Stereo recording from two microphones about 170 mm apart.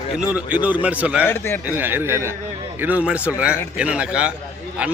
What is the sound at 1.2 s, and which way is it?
Speech, 15° left (ahead or behind).